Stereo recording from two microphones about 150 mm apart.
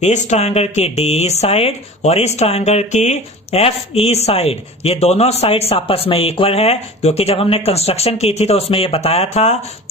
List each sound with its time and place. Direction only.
0.0 s speech: 50° left (ahead or behind)